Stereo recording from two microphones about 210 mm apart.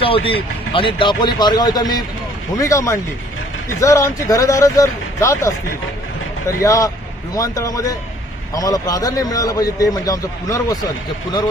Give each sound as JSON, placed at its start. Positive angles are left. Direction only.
{"t": 0.0, "sound": "a man's voice", "side_deg": 25}
{"t": 6.6, "sound": "a man's voice", "side_deg": 15}